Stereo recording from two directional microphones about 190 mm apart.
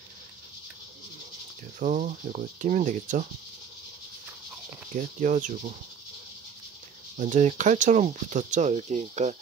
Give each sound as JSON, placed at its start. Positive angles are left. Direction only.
{"t": 1.8, "sound": "speech", "side_deg": -40}
{"t": 4.9, "sound": "speech", "side_deg": -40}
{"t": 7.2, "sound": "speech", "side_deg": -40}